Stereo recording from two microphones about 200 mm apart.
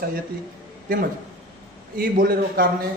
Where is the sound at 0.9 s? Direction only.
45° right (ahead or behind).